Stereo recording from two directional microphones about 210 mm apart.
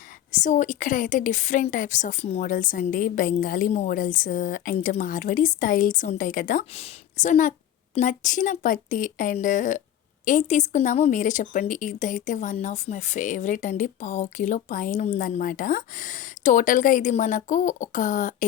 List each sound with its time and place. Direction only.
0.4 s a woman's voice: 35° left (ahead or behind)